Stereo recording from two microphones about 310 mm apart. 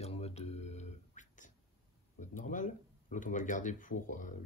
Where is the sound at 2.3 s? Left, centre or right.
Left.